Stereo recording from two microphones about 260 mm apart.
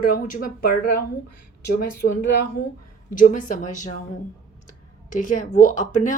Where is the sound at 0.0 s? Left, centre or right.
Left.